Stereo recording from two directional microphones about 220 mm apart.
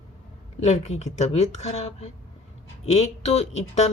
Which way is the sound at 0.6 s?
30° left (ahead or behind).